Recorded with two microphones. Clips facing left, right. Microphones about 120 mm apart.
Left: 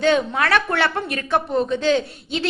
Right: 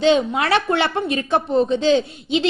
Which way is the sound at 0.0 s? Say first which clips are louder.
Right 2 dB; 20° right (ahead or behind).